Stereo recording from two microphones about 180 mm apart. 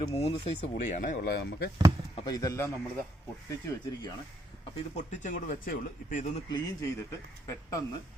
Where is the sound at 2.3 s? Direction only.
20° left (ahead or behind).